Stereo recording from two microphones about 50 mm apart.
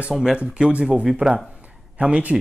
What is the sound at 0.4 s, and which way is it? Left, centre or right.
Speech, right.